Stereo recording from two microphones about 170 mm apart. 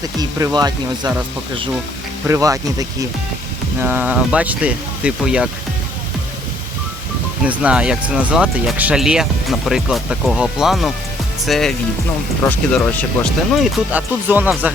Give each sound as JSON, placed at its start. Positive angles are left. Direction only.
{"t": 0.2, "sound": "speech", "side_deg": -20}
{"t": 2.2, "sound": "speech", "side_deg": -20}
{"t": 7.4, "sound": "speech", "side_deg": -5}
{"t": 13.6, "sound": "speech", "side_deg": -10}